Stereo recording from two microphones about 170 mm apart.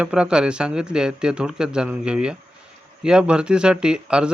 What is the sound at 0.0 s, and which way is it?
Speech, 5° right (ahead or behind).